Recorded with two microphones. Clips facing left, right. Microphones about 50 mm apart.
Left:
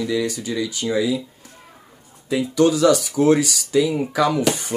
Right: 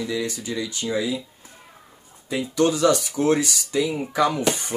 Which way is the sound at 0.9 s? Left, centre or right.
Centre.